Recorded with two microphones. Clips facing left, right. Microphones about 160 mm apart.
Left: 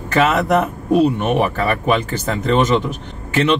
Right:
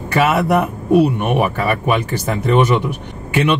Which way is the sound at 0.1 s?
10° right (ahead or behind).